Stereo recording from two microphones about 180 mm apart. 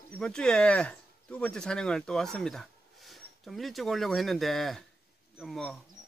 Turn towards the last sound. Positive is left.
turn(degrees=0)  # may be behind; listen again after turning